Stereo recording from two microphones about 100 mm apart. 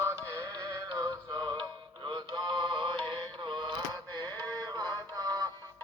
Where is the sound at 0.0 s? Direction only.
30° right (ahead or behind).